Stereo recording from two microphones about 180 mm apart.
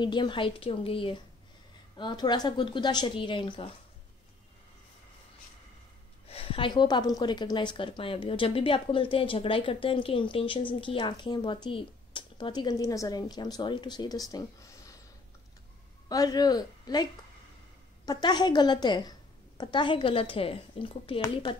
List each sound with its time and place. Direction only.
0.0 s a woman's voice: 25° left (ahead or behind)
6.2 s a woman's voice: 30° left (ahead or behind)
16.1 s a woman's voice: 20° left (ahead or behind)